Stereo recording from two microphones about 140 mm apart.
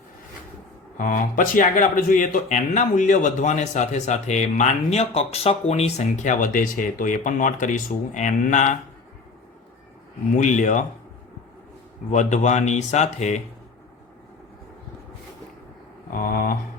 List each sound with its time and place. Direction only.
0.9 s speech: 75° left (ahead or behind)
10.3 s speech: 60° left (ahead or behind)
12.1 s speech: 60° left (ahead or behind)
16.0 s a sound: 85° left